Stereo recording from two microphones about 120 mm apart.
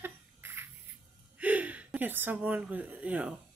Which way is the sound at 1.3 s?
10° right (ahead or behind).